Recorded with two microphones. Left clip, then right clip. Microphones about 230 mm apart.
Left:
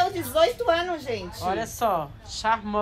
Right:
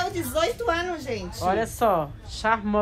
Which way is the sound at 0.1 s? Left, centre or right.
Left.